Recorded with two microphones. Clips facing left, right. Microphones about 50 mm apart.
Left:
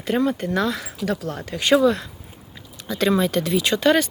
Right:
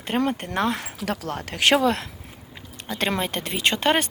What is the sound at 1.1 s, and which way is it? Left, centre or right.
Speech, right.